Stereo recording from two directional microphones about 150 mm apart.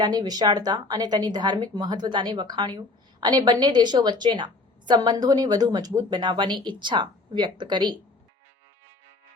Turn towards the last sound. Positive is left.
turn(degrees=-30)  # may be behind; listen again after turning